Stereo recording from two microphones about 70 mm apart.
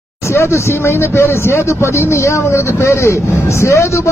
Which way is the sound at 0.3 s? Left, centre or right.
Left.